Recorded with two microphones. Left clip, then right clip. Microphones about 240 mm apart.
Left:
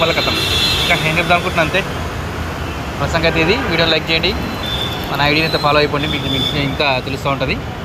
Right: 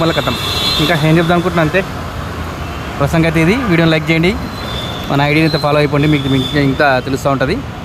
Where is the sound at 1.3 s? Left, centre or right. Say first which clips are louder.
Right 1 dB; right.